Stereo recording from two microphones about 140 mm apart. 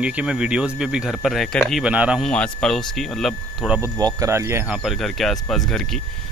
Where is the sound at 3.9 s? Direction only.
25° right (ahead or behind).